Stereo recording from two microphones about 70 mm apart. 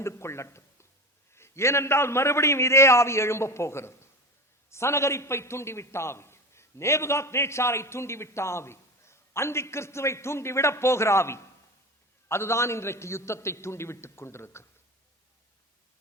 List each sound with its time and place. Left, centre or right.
0.0 s a man's voice: left